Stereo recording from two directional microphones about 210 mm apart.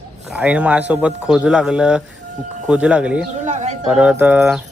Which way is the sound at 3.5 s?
35° right (ahead or behind).